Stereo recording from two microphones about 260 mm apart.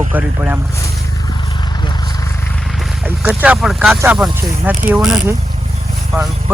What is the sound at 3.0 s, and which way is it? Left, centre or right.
Speech, centre.